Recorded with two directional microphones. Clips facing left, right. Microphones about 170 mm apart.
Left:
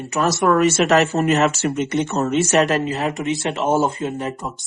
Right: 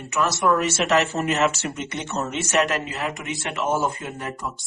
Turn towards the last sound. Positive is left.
turn(degrees=25)  # may be behind; listen again after turning